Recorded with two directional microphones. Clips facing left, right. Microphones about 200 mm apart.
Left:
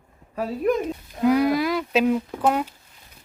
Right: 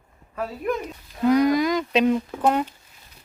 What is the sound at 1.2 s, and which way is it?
Speech, 5° left (ahead or behind).